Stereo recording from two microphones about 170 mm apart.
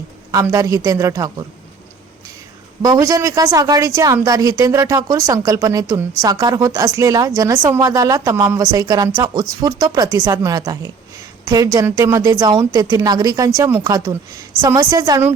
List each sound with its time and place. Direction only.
0.3 s a woman's voice: 20° right (ahead or behind)
2.8 s a woman's voice: 20° right (ahead or behind)